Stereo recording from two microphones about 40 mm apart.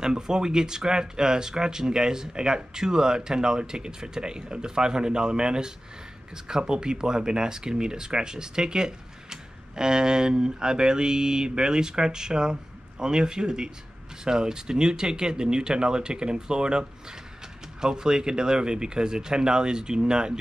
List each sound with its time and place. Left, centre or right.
0.0 s speech: centre